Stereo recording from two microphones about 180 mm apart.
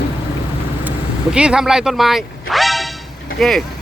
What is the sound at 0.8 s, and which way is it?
Vehicle, 5° right (ahead or behind).